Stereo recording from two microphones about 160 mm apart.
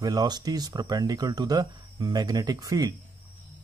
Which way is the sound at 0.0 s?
25° right (ahead or behind).